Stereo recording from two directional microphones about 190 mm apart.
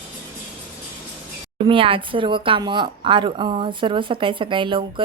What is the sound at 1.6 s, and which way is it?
Speech, 30° right (ahead or behind).